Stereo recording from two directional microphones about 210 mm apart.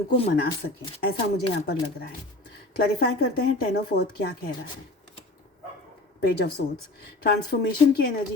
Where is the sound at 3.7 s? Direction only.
50° left (ahead or behind).